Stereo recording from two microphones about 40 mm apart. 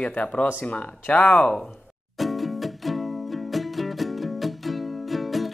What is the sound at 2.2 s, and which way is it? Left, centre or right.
Music, centre.